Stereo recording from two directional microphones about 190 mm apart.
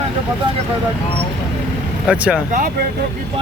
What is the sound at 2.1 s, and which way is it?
Speech, 5° right (ahead or behind).